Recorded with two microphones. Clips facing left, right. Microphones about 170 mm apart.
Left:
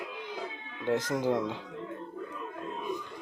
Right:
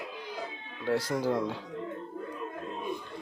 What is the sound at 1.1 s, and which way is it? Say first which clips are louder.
Speech: even; 20° left (ahead or behind).